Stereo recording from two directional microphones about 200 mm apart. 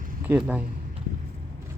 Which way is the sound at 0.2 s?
5° right (ahead or behind).